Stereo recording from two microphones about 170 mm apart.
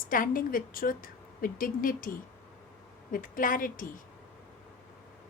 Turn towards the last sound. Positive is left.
turn(degrees=55)  # may be behind; listen again after turning